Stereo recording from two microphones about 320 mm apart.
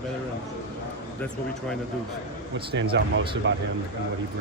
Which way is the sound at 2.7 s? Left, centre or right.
Right.